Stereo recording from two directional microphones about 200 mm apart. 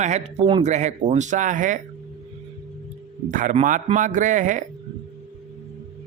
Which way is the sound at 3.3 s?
40° right (ahead or behind).